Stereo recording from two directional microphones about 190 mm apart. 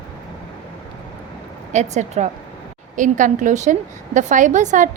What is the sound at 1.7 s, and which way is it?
A woman's voice, 40° right (ahead or behind).